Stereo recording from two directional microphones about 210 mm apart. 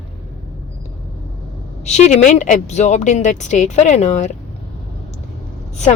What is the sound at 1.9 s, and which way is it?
A woman's voice, 35° left (ahead or behind).